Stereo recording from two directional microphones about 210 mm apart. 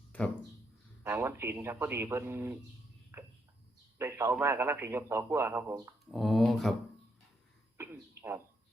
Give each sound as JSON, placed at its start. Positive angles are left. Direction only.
{"t": 0.1, "sound": "speech", "side_deg": 5}
{"t": 1.0, "sound": "a man's voice", "side_deg": -10}
{"t": 3.1, "sound": "insect", "side_deg": -10}
{"t": 3.9, "sound": "a man's voice", "side_deg": -10}
{"t": 6.1, "sound": "speech", "side_deg": 0}
{"t": 7.8, "sound": "a sound", "side_deg": -10}